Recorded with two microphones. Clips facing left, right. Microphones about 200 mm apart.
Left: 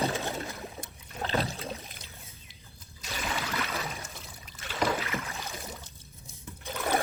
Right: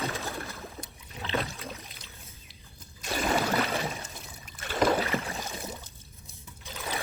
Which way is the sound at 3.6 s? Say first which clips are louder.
Right 5 dB; 30° right (ahead or behind).